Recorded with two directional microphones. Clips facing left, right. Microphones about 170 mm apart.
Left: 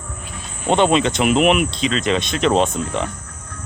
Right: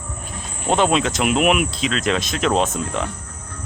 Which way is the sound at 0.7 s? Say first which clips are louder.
Left 2 dB; centre (ahead or behind).